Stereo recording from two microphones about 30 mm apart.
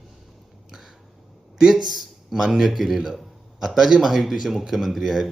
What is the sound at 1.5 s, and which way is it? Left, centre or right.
Speech, right.